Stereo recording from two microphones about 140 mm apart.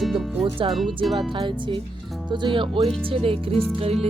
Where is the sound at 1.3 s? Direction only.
35° right (ahead or behind).